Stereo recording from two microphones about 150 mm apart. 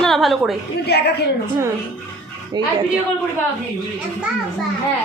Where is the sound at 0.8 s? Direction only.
90° left.